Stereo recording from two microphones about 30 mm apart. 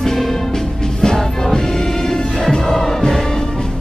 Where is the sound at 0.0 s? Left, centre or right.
Centre.